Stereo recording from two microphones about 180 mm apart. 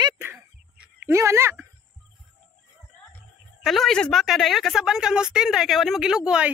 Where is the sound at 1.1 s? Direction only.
15° right (ahead or behind).